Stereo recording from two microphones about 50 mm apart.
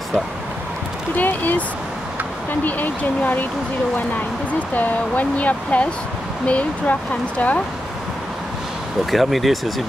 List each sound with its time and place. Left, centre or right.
1.1 s speech: left
2.6 s speech: left
4.7 s speech: left
9.1 s speech: centre